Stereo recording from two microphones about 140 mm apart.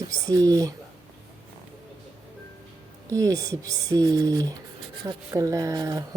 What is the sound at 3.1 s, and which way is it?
Speech, 25° right (ahead or behind).